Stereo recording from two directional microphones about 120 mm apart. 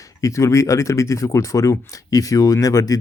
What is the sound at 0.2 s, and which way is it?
Speech, 25° left (ahead or behind).